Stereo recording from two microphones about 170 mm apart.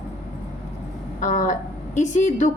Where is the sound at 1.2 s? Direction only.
45° left (ahead or behind).